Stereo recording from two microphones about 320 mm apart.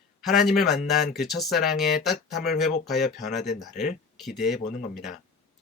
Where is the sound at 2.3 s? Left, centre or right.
Left.